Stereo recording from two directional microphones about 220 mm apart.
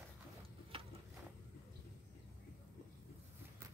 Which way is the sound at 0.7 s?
25° right (ahead or behind).